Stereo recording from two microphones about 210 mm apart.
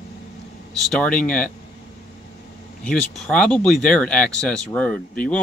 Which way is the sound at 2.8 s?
5° left (ahead or behind).